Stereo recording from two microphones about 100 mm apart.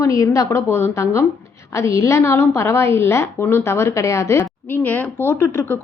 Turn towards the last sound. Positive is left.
turn(degrees=25)  # may be behind; listen again after turning